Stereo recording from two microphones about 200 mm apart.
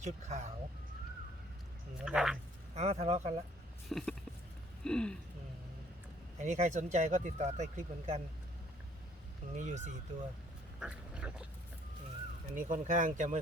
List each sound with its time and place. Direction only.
0.0 s speech: 35° right (ahead or behind)
2.0 s speech: centre (ahead or behind)
2.7 s speech: 30° right (ahead or behind)
3.8 s speech: centre (ahead or behind)
6.4 s speech: 35° right (ahead or behind)
9.6 s speech: 40° right (ahead or behind)
10.8 s speech: 5° right (ahead or behind)
12.5 s speech: 40° right (ahead or behind)